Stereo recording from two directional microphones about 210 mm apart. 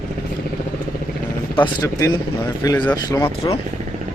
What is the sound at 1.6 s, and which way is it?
Speech, 15° left (ahead or behind).